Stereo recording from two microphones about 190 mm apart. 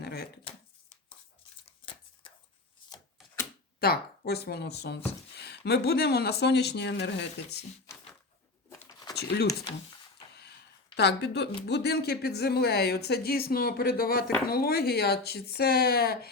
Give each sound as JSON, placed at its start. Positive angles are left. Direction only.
{"t": 0.0, "sound": "shuffling cards", "side_deg": 60}
{"t": 3.8, "sound": "speech", "side_deg": 55}
{"t": 8.9, "sound": "a sound", "side_deg": 20}
{"t": 10.9, "sound": "speech", "side_deg": 60}